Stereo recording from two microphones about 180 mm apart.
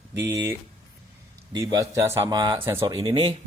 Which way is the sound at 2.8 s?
25° right (ahead or behind).